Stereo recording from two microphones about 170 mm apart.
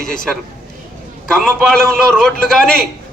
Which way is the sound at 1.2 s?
5° left (ahead or behind).